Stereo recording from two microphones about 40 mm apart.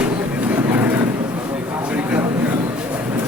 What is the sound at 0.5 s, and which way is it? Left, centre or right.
Vehicle, right.